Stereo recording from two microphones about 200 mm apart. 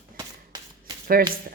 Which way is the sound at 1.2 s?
50° right (ahead or behind).